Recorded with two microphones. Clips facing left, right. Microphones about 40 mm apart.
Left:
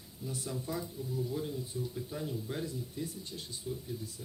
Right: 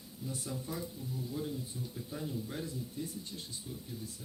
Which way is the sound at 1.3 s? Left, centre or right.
Centre.